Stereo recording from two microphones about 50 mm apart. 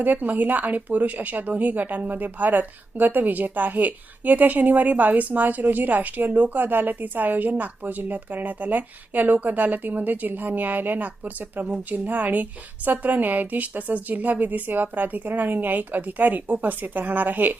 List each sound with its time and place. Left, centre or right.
0.0 s a woman's voice: right